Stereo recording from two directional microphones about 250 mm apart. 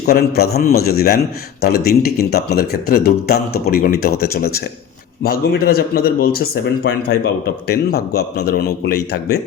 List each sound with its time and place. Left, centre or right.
0.1 s speech: left